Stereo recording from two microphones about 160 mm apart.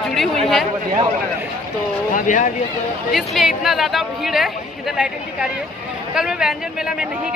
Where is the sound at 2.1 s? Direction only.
55° left (ahead or behind).